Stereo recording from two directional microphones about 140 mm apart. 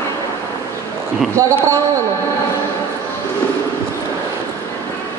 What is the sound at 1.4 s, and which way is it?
Speech, 20° right (ahead or behind).